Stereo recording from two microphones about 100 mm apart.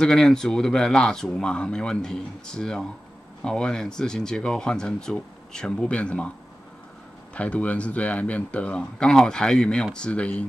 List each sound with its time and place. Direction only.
0.0 s speech: 5° left (ahead or behind)
7.3 s speech: 15° left (ahead or behind)